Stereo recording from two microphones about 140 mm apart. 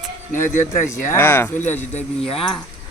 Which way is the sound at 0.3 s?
15° left (ahead or behind).